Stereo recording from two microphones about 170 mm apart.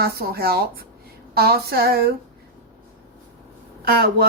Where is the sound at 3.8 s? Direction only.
60° right (ahead or behind).